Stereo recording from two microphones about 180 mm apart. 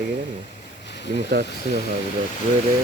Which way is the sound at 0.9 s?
75° left (ahead or behind).